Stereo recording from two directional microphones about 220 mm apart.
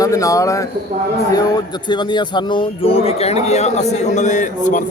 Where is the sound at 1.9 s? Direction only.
20° left (ahead or behind).